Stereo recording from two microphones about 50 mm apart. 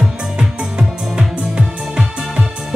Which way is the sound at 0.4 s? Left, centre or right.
Centre.